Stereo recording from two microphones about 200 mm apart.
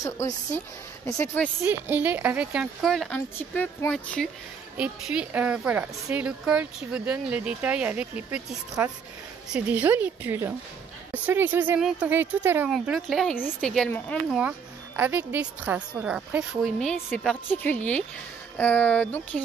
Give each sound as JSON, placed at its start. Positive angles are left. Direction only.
{"t": 0.0, "sound": "speech", "side_deg": 15}
{"t": 1.6, "sound": "a woman's voice", "side_deg": -10}
{"t": 4.7, "sound": "a woman's voice", "side_deg": -5}
{"t": 15.0, "sound": "a woman's voice", "side_deg": -10}